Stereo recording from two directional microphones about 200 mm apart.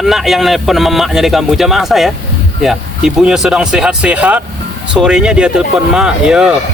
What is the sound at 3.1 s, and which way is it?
Speech, 5° right (ahead or behind).